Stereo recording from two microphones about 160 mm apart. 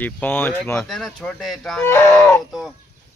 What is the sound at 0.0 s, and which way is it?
Speech, 10° left (ahead or behind).